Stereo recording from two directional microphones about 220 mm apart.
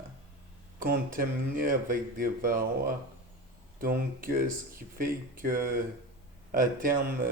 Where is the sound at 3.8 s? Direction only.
40° right (ahead or behind).